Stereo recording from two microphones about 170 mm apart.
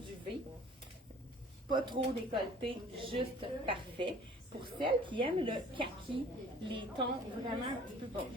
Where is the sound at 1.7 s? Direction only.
25° right (ahead or behind).